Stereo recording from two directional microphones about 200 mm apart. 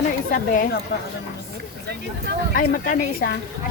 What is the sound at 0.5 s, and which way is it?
Speech, 45° left (ahead or behind).